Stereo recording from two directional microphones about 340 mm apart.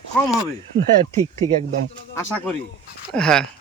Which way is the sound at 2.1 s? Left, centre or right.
Centre.